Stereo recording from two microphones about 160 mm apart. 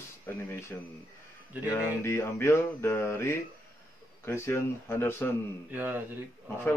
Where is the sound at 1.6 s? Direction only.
15° left (ahead or behind).